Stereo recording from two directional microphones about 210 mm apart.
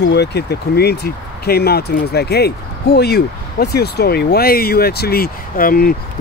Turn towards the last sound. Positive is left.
turn(degrees=45)  # may be behind; listen again after turning